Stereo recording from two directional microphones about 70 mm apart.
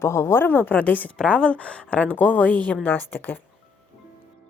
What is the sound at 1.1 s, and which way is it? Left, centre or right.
A woman's voice, centre.